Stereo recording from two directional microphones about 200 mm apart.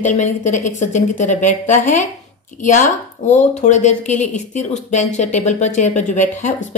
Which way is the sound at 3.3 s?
35° left (ahead or behind).